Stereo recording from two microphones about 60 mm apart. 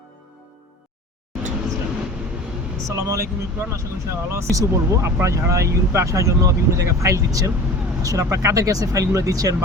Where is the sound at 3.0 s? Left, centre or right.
Right.